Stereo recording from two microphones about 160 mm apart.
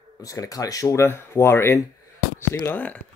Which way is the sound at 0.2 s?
20° left (ahead or behind).